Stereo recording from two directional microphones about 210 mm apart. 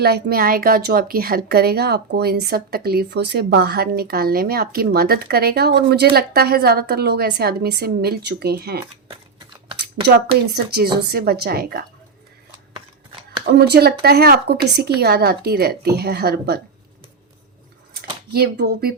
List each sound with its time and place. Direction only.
0.0 s a woman's voice: 50° right (ahead or behind)
10.5 s a woman's voice: 50° right (ahead or behind)
13.5 s a woman's voice: 50° right (ahead or behind)
17.9 s a sound: 50° right (ahead or behind)